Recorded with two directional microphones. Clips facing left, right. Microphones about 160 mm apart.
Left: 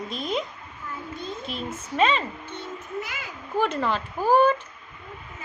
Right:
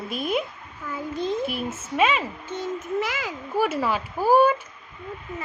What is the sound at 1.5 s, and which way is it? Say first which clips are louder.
Speech: right 2 dB; 5° right (ahead or behind).